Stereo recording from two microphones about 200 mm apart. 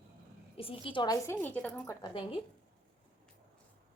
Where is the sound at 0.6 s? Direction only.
25° left (ahead or behind); by 1.9 s 5° left (ahead or behind).